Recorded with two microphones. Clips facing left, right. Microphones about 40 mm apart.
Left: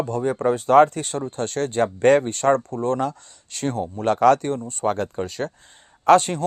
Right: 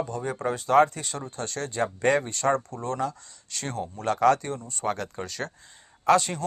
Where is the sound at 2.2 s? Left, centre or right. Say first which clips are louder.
Left 6 dB; left.